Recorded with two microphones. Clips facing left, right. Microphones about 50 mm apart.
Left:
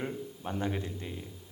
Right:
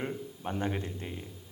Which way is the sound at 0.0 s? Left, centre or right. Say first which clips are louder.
Right 1 dB; centre.